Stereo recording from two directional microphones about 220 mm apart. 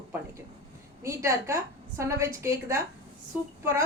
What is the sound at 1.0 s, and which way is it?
A woman's voice, 15° right (ahead or behind).